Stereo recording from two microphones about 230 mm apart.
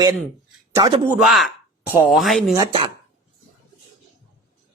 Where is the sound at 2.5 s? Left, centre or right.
Centre.